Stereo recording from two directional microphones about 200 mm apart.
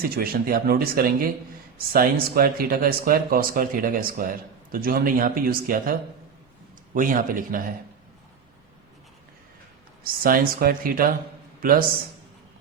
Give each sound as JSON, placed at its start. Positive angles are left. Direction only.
{"t": 0.2, "sound": "speech", "side_deg": -50}
{"t": 10.0, "sound": "speech", "side_deg": -45}